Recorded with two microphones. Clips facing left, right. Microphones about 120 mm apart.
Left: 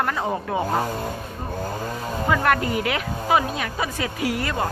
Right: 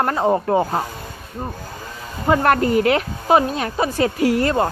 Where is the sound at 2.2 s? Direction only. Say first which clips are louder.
Right 5 dB; 40° right (ahead or behind).